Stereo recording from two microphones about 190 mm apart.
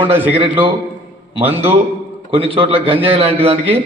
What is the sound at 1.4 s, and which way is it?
Speech, 10° right (ahead or behind).